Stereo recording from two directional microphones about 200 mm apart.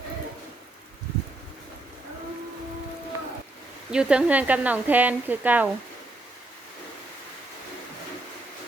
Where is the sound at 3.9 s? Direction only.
5° right (ahead or behind).